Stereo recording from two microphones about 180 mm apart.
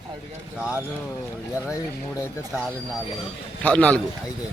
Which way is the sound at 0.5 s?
5° right (ahead or behind).